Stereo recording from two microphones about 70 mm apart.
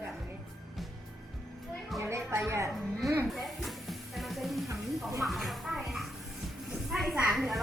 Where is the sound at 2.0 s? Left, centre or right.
Right.